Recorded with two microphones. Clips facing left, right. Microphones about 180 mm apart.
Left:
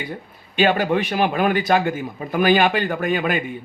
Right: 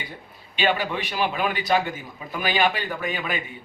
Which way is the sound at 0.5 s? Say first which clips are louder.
Left 6 dB; 45° left (ahead or behind).